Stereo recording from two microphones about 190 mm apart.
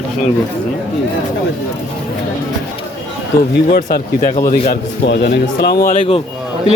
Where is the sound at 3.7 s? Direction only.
55° left (ahead or behind).